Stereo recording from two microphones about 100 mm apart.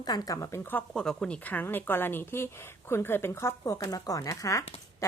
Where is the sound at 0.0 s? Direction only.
40° left (ahead or behind); by 0.9 s 20° left (ahead or behind).